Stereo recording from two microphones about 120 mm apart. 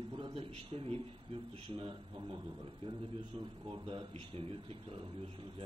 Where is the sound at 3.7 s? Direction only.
50° right (ahead or behind).